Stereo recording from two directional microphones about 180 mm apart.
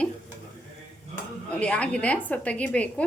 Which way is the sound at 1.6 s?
5° left (ahead or behind).